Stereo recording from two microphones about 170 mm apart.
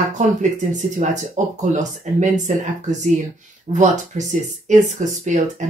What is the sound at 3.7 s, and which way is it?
Speech, 45° right (ahead or behind).